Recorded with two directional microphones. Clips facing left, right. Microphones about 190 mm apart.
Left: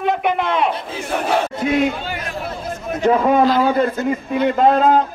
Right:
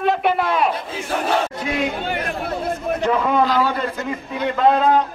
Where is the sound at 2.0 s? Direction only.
60° right (ahead or behind).